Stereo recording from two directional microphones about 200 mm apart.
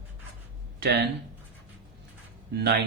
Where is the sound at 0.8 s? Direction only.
60° right (ahead or behind).